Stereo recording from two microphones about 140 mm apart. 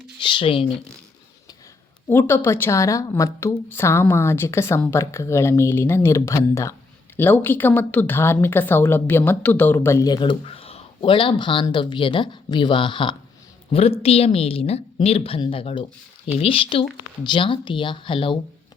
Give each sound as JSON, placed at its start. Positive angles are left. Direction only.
{"t": 0.2, "sound": "speech", "side_deg": 35}
{"t": 2.0, "sound": "a woman's voice", "side_deg": 15}